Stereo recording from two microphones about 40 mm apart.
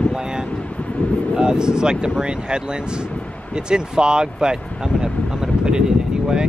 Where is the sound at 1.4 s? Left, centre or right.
Centre.